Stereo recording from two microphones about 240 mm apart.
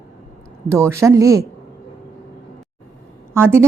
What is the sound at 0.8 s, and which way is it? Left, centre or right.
Speech, centre.